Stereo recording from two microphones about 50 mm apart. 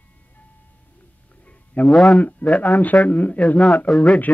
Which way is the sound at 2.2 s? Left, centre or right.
Left.